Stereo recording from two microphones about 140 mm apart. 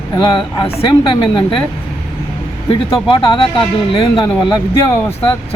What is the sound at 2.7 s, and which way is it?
Speech, 40° left (ahead or behind).